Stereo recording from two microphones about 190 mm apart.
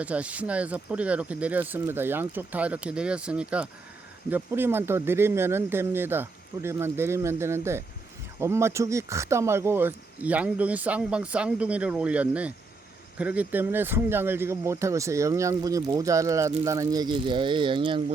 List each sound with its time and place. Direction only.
0.0 s speech: 5° right (ahead or behind); by 18.0 s 25° right (ahead or behind)